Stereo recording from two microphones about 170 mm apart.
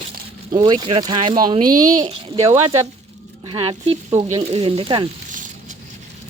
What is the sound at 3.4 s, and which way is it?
Speech, 30° right (ahead or behind).